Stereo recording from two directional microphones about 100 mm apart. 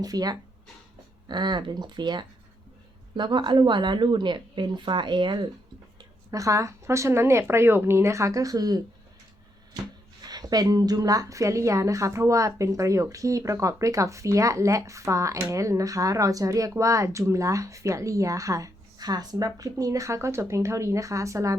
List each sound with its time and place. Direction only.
0.0 s a woman's voice: 40° right (ahead or behind)
6.0 s a woman's voice: 35° right (ahead or behind)
10.2 s a woman's voice: 40° right (ahead or behind)